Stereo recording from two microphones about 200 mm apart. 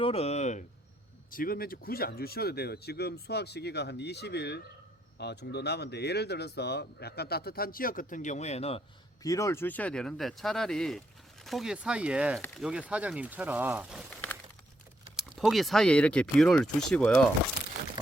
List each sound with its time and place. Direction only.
0.0 s speech: 30° left (ahead or behind)
1.3 s speech: 45° left (ahead or behind)
9.2 s speech: 15° left (ahead or behind); by 14.0 s 10° right (ahead or behind)
14.1 s a sound: 10° left (ahead or behind)
15.1 s speech: centre (ahead or behind)